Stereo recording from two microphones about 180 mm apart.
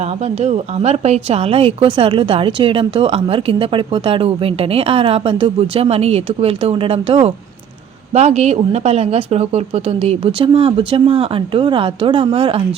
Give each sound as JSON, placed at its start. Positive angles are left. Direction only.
{"t": 0.0, "sound": "a woman's voice", "side_deg": -35}